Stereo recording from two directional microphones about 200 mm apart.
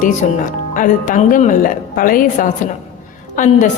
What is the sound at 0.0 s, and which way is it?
A woman's voice, 40° left (ahead or behind).